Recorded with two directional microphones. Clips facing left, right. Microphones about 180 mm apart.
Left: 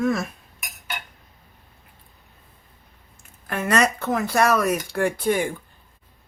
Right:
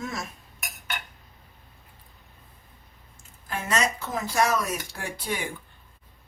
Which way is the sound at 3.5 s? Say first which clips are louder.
Left 6 dB; 60° left (ahead or behind).